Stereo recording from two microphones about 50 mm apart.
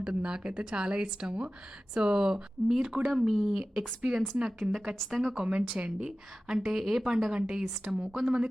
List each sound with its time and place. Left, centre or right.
0.0 s a woman's voice: centre
3.1 s speech: centre
4.0 s a woman's voice: right
4.9 s speech: centre
5.3 s a woman's voice: right
6.7 s speech: centre
7.3 s a woman's voice: centre